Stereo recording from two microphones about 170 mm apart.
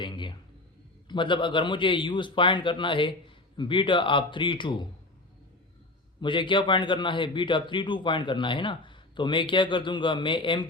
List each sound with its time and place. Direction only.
0.0 s a sound: 25° left (ahead or behind)
1.0 s a man's voice: 30° left (ahead or behind)
6.1 s a man's voice: 30° left (ahead or behind)